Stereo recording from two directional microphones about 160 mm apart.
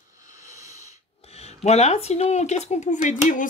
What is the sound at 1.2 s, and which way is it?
Speech, 40° left (ahead or behind).